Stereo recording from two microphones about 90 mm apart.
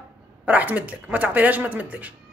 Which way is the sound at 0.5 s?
15° right (ahead or behind).